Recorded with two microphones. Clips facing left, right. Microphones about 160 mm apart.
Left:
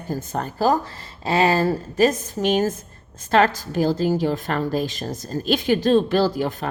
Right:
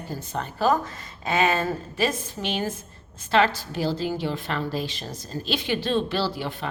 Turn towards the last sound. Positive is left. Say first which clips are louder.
# left 7 dB
turn(degrees=45)  # may be behind; listen again after turning